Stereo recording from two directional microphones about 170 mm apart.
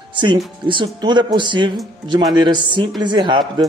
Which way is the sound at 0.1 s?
25° right (ahead or behind).